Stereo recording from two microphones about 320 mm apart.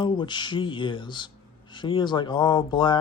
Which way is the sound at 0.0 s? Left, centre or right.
Centre.